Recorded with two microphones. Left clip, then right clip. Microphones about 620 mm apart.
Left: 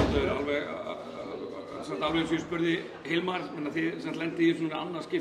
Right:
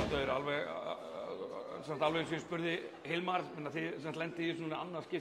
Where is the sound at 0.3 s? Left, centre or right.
Right.